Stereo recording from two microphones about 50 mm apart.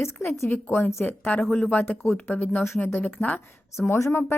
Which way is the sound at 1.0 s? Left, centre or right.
Left.